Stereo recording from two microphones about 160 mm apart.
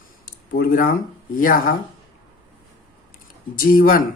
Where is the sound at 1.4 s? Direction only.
60° left (ahead or behind).